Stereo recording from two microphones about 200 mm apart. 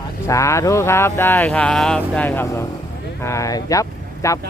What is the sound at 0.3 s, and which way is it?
Speech, 15° left (ahead or behind).